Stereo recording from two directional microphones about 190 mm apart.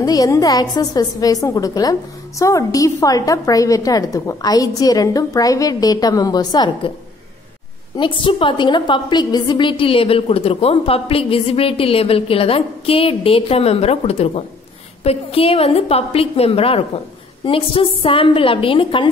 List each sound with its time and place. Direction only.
0.0 s a woman's voice: 20° left (ahead or behind)
7.9 s a woman's voice: 25° left (ahead or behind)